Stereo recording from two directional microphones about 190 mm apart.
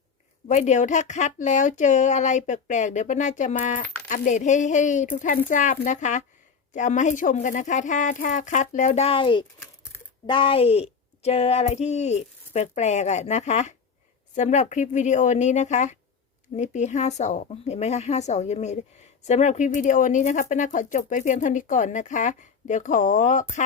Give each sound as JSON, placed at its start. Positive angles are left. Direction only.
{"t": 0.4, "sound": "speech", "side_deg": 40}